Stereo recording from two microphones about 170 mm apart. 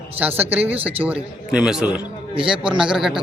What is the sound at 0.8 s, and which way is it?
Speech, 35° right (ahead or behind).